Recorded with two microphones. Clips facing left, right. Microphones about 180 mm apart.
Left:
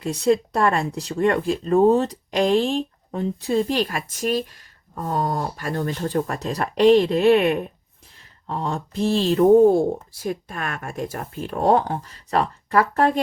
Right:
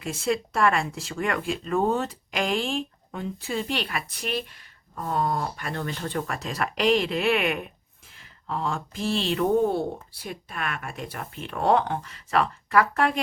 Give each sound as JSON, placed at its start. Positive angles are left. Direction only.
{"t": 0.0, "sound": "speech", "side_deg": 40}